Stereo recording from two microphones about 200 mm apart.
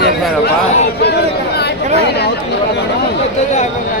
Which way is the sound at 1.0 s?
55° left (ahead or behind).